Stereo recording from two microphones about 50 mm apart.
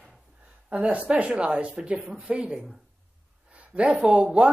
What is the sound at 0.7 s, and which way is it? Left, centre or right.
Speech, right.